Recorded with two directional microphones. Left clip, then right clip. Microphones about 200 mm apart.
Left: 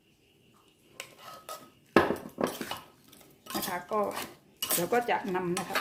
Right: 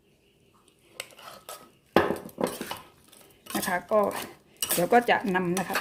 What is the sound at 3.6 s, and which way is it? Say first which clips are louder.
Speech: right 7 dB; 45° right (ahead or behind).